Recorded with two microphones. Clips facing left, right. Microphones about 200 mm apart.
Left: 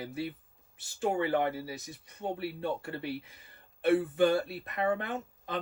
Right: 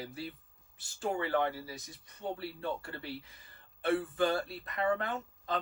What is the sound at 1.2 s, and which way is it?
Speech, 25° left (ahead or behind).